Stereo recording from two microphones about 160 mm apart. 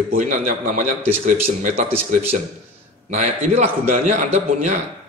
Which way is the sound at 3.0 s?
50° right (ahead or behind).